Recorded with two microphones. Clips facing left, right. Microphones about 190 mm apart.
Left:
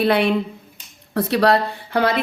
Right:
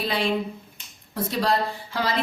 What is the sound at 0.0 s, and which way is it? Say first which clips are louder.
A woman's voice: left 7 dB; 60° left (ahead or behind).